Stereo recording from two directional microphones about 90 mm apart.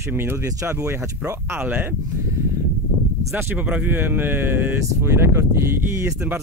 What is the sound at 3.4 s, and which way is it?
Speech, 25° right (ahead or behind).